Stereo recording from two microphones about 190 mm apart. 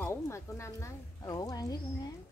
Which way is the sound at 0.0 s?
15° left (ahead or behind).